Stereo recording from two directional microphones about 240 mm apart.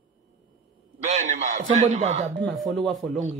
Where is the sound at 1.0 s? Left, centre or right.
Right.